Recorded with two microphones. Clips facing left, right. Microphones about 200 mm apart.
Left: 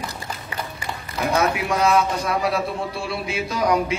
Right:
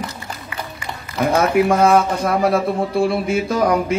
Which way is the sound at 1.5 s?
55° right (ahead or behind).